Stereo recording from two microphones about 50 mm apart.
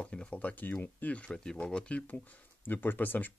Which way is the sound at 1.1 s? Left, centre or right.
Left.